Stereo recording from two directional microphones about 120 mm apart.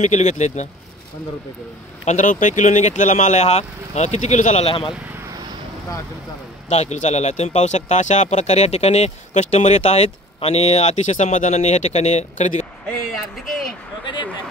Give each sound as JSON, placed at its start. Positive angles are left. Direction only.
{"t": 0.0, "sound": "speech", "side_deg": 75}
{"t": 2.0, "sound": "speech", "side_deg": 90}
{"t": 4.6, "sound": "speech", "side_deg": 50}
{"t": 6.7, "sound": "speech", "side_deg": 70}
{"t": 13.5, "sound": "a sound", "side_deg": 0}